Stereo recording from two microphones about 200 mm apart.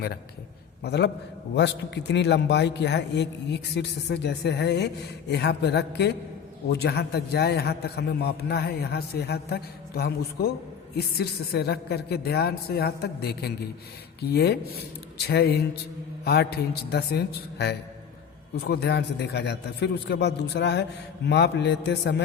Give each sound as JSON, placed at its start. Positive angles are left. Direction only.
{"t": 0.8, "sound": "a man's voice", "side_deg": 55}